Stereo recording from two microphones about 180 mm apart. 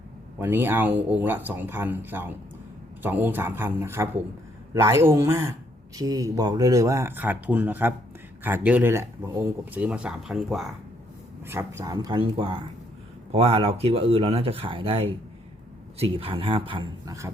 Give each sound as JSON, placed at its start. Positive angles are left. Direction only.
{"t": 0.3, "sound": "speech", "side_deg": -10}
{"t": 11.4, "sound": "a man's voice", "side_deg": -15}